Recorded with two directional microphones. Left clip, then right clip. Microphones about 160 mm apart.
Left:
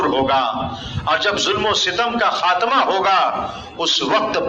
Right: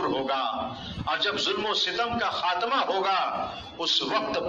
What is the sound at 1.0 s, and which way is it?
A man's voice, 35° left (ahead or behind).